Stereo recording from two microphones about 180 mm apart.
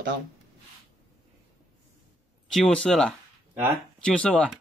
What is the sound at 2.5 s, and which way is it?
Speech, 5° left (ahead or behind).